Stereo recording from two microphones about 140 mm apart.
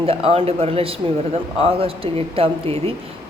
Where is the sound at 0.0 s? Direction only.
45° right (ahead or behind).